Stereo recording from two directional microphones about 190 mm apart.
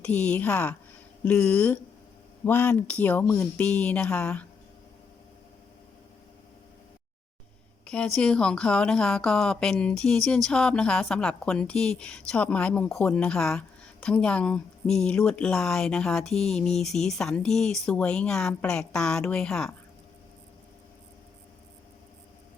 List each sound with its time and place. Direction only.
0.0 s speech: 5° left (ahead or behind)
7.9 s speech: 5° left (ahead or behind)